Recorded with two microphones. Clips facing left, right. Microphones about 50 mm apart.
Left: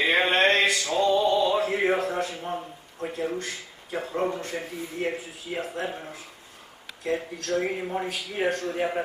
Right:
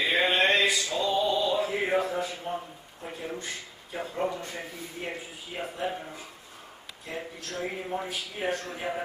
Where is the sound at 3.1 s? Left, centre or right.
Left.